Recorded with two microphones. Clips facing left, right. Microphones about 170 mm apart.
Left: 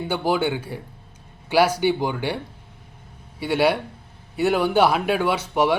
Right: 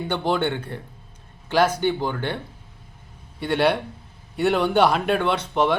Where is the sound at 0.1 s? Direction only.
5° left (ahead or behind).